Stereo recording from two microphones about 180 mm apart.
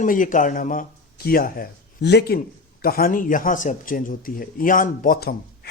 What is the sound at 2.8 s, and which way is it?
A man's voice, 55° left (ahead or behind).